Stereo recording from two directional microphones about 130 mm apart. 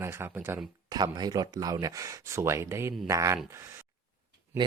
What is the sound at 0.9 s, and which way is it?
Speech, 30° right (ahead or behind).